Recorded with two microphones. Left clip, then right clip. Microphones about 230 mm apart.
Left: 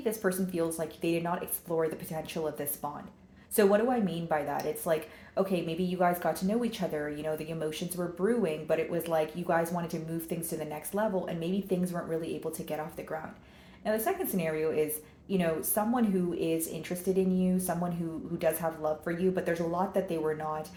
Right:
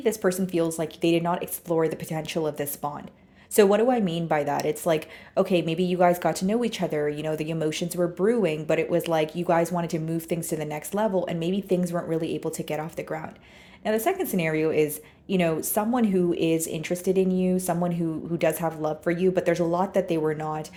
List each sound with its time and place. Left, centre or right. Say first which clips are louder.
0.0 s a woman's voice: right 7 dB; right